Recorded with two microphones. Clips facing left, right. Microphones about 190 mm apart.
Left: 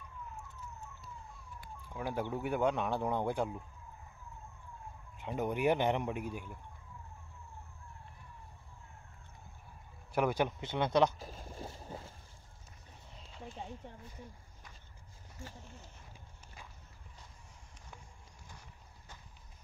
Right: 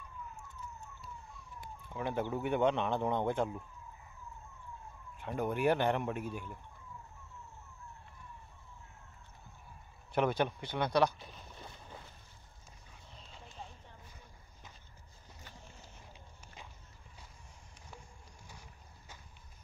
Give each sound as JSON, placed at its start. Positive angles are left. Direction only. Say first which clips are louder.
{"t": 1.6, "sound": "police car", "louder": "right 2 dB", "side_deg": 5}
{"t": 2.2, "sound": "speech", "louder": "right 2 dB", "side_deg": 0}
{"t": 5.1, "sound": "speech", "louder": "even", "side_deg": 15}
{"t": 10.1, "sound": "speech", "louder": "even", "side_deg": 10}
{"t": 11.1, "sound": "boat", "louder": "left 6 dB", "side_deg": 45}